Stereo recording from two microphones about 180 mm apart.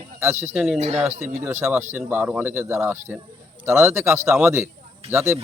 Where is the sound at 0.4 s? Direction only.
5° right (ahead or behind).